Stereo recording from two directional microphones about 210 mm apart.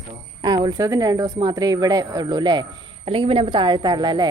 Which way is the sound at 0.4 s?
20° right (ahead or behind).